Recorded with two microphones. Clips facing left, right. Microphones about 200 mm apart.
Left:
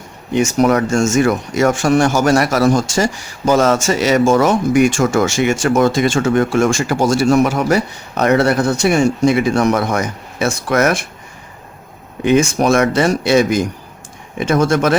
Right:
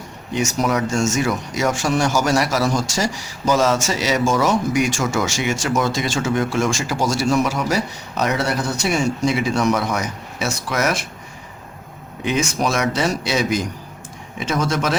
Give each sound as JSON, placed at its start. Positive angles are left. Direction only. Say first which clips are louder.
{"t": 0.6, "sound": "speech", "louder": "left 6 dB", "side_deg": 55}
{"t": 12.2, "sound": "speech", "louder": "left 8 dB", "side_deg": 55}